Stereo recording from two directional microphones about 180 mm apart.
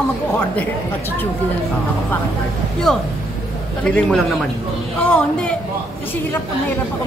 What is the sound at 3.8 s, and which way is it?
A man's voice, 5° left (ahead or behind).